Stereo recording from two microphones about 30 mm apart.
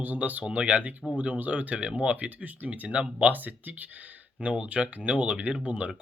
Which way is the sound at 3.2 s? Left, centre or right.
Right.